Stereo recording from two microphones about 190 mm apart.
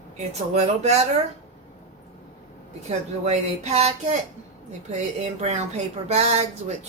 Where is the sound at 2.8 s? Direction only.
35° right (ahead or behind).